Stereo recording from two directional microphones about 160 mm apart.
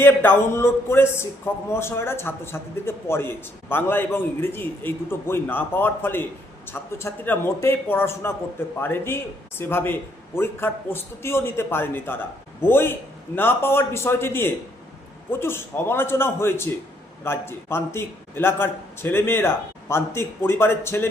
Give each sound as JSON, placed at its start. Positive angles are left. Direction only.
{"t": 0.0, "sound": "a man's voice", "side_deg": 15}